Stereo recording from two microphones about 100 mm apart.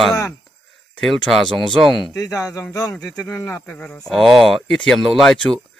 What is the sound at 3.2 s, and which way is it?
Speech, 25° left (ahead or behind).